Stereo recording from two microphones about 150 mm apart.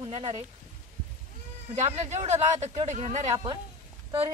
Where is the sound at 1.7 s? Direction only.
50° right (ahead or behind).